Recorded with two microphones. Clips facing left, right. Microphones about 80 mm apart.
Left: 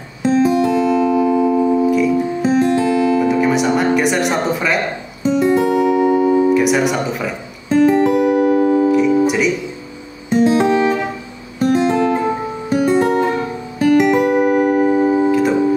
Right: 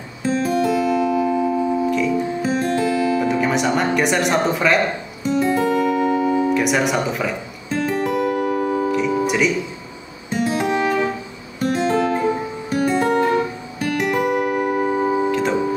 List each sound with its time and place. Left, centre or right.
0.2 s music: left
0.9 s music: centre
1.4 s music: centre
2.4 s music: left
3.2 s music: centre
5.2 s music: left
6.5 s speech: centre
7.7 s music: left; by 9.5 s centre
10.3 s music: left
11.6 s guitar: left
12.6 s music: left; by 15.5 s centre